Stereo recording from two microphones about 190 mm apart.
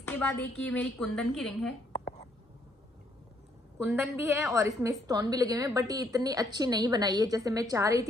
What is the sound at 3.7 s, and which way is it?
A woman's voice, 10° right (ahead or behind).